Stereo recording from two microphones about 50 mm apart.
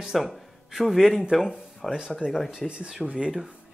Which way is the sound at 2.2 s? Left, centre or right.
Right.